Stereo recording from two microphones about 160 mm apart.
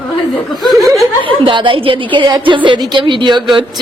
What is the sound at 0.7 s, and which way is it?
Speech, 20° right (ahead or behind).